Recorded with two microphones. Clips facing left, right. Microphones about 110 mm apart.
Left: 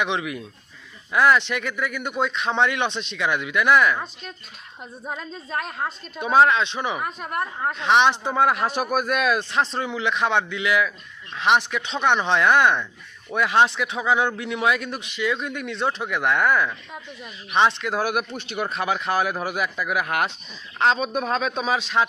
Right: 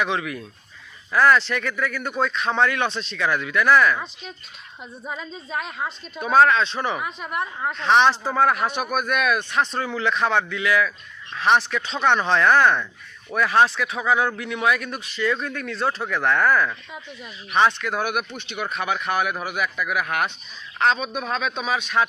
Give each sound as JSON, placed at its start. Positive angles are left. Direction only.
{"t": 0.0, "sound": "a man's voice", "side_deg": 20}
{"t": 3.9, "sound": "a woman's voice", "side_deg": 0}
{"t": 6.1, "sound": "a man's voice", "side_deg": 20}
{"t": 7.0, "sound": "a woman's voice", "side_deg": 0}
{"t": 7.8, "sound": "a man's voice", "side_deg": 15}
{"t": 8.6, "sound": "a man's voice", "side_deg": 35}
{"t": 16.6, "sound": "a woman's voice", "side_deg": 0}
{"t": 17.5, "sound": "a man's voice", "side_deg": 25}